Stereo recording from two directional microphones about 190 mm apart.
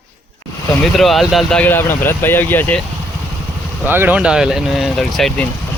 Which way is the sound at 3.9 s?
10° right (ahead or behind).